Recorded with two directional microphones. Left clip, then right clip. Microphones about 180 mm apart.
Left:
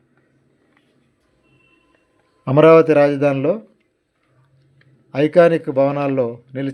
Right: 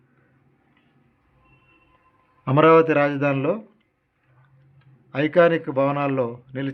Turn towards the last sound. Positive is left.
turn(degrees=25)  # may be behind; listen again after turning